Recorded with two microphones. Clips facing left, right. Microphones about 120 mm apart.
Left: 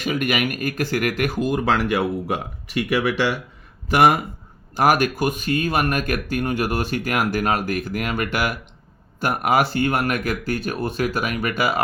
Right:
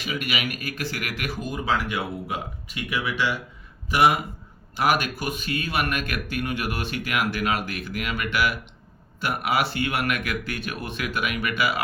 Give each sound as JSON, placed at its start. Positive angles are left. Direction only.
{"t": 0.0, "sound": "speech", "side_deg": 50}
{"t": 1.4, "sound": "speech", "side_deg": 75}
{"t": 3.8, "sound": "speech", "side_deg": 50}